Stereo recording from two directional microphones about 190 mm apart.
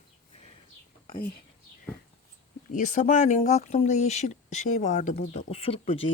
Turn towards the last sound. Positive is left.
turn(degrees=30)  # may be behind; listen again after turning